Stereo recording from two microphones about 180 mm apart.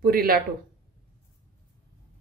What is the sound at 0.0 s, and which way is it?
Speech, 55° right (ahead or behind).